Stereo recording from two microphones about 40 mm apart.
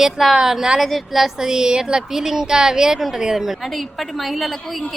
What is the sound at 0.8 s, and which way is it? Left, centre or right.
Speech, centre.